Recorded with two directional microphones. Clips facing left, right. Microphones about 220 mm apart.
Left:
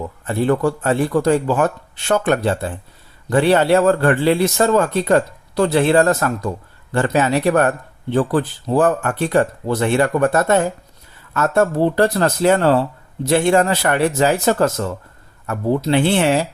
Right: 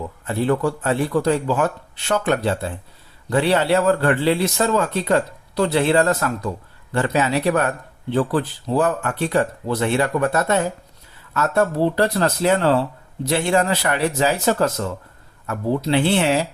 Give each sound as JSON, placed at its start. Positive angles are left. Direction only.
{"t": 0.3, "sound": "a man's voice", "side_deg": 45}